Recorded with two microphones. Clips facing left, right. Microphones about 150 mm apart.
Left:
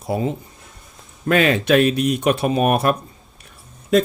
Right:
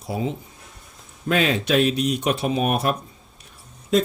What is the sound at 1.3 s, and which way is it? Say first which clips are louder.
Speech: left 4 dB; 60° left (ahead or behind).